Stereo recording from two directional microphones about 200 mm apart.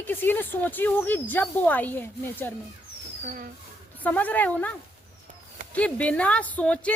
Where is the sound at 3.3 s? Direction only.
45° right (ahead or behind).